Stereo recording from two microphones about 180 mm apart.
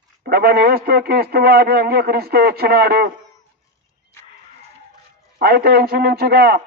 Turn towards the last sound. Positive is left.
turn(degrees=-60)  # may be behind; listen again after turning